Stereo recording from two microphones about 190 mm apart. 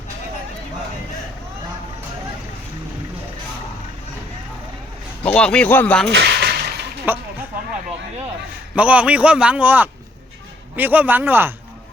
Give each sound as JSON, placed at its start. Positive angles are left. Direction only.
{"t": 5.2, "sound": "speech", "side_deg": 5}
{"t": 6.1, "sound": "a sound", "side_deg": -65}
{"t": 7.1, "sound": "a man's voice", "side_deg": -10}
{"t": 8.7, "sound": "a man's voice", "side_deg": -5}